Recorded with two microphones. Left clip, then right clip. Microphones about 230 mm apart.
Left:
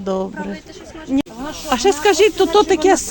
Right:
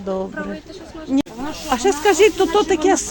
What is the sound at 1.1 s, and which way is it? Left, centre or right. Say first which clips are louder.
A woman's voice: even; centre.